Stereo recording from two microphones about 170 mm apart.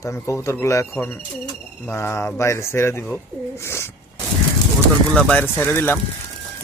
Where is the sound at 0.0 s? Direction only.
15° left (ahead or behind).